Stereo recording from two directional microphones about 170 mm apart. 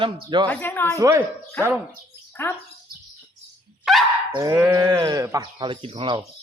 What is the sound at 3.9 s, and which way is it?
Dog, centre (ahead or behind).